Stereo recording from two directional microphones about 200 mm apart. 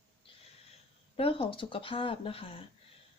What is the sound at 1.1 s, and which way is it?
Speech, 30° left (ahead or behind).